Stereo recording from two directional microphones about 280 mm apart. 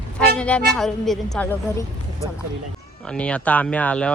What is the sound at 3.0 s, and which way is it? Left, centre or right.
Speech, centre.